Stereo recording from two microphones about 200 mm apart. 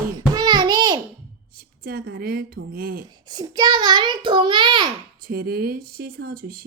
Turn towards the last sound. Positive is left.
turn(degrees=-45)  # may be behind; listen again after turning